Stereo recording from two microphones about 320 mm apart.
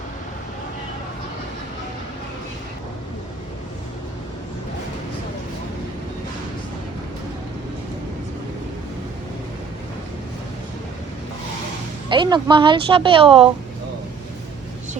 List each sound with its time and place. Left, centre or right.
12.0 s speech: centre